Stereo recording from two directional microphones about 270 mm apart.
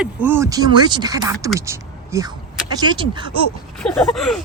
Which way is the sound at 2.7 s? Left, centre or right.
Centre.